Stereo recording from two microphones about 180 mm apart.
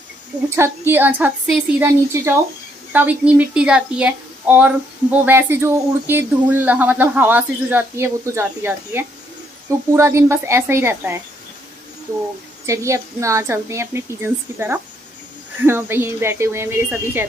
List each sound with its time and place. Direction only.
0.6 s speech: 10° right (ahead or behind)
5.2 s speech: 10° right (ahead or behind)
12.6 s speech: 15° right (ahead or behind)